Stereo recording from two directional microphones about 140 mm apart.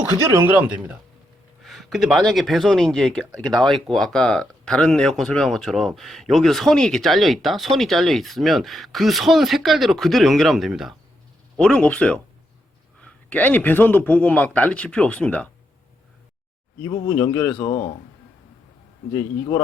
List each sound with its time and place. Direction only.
0.3 s speech: 15° right (ahead or behind)
1.6 s a man's voice: centre (ahead or behind)
16.8 s speech: 20° left (ahead or behind)
19.1 s speech: 25° left (ahead or behind)